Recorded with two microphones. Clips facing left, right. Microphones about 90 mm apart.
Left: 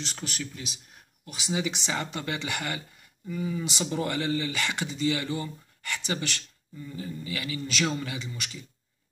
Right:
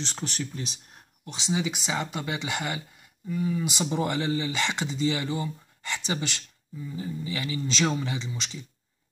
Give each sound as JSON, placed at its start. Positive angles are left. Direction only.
{"t": 0.0, "sound": "speech", "side_deg": -35}
{"t": 3.3, "sound": "speech", "side_deg": 0}
{"t": 3.9, "sound": "speech", "side_deg": -20}